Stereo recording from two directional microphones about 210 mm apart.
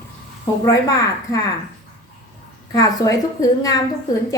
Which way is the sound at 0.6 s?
15° left (ahead or behind).